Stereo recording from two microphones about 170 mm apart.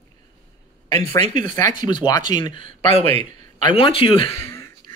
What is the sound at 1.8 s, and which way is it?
Speech, 25° left (ahead or behind).